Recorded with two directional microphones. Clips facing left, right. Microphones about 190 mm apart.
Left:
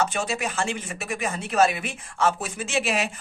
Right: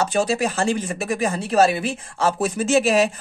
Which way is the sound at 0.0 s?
35° right (ahead or behind).